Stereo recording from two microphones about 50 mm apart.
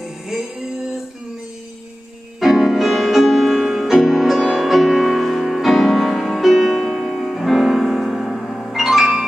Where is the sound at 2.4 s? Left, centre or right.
Centre.